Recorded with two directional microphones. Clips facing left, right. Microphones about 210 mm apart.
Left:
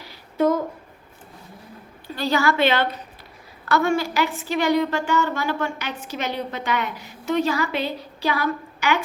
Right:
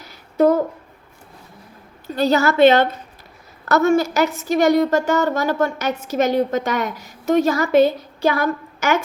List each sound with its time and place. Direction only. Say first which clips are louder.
2.2 s a woman's voice: right 7 dB; 40° right (ahead or behind)